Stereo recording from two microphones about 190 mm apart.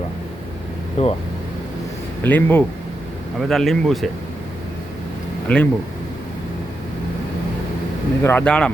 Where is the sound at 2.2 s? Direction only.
10° left (ahead or behind).